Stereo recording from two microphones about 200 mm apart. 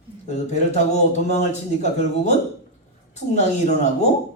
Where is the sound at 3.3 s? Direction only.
35° left (ahead or behind).